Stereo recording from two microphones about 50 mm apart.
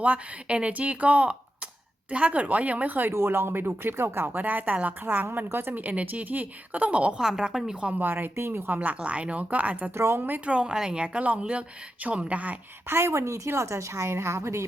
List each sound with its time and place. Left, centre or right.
0.0 s a woman's voice: right
3.1 s speech: right
4.4 s a woman's voice: right
5.7 s a woman's voice: right
7.2 s speech: centre
7.9 s a woman's voice: right
8.4 s speech: right
8.7 s a woman's voice: right
10.2 s a woman's voice: right
10.4 s speech: centre
12.9 s a woman's voice: right
13.6 s a woman's voice: right